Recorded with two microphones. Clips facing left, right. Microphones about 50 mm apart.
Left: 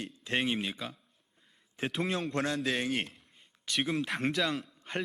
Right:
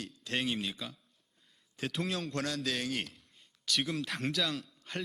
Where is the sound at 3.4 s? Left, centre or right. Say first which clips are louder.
Left 1 dB; left.